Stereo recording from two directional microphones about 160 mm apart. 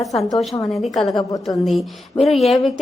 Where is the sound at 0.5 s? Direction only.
20° left (ahead or behind).